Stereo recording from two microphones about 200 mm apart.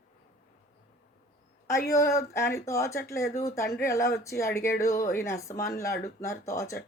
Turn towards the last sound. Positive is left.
turn(degrees=15)  # may be behind; listen again after turning